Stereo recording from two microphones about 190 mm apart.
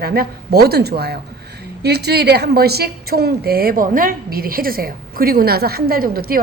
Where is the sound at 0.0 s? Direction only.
55° right (ahead or behind).